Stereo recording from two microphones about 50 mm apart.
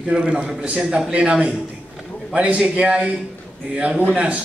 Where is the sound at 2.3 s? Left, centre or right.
Right.